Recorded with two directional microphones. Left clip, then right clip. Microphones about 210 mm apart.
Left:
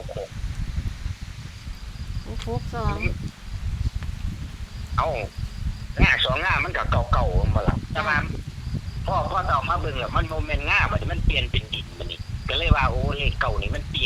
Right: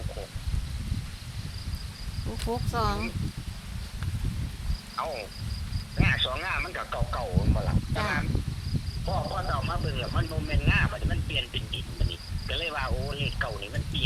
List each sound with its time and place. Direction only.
2.4 s speech: 20° right (ahead or behind)
4.9 s a man's voice: 40° left (ahead or behind)